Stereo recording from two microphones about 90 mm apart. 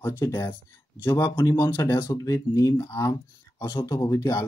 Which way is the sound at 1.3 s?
35° left (ahead or behind).